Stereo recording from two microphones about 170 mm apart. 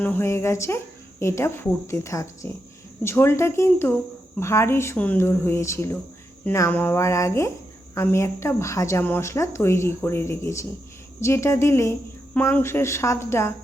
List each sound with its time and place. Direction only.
0.0 s a woman's voice: 10° left (ahead or behind)